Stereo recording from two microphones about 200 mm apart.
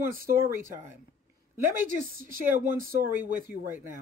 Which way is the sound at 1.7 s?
45° right (ahead or behind).